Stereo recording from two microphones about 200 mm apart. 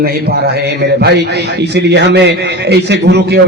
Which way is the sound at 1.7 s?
60° right (ahead or behind).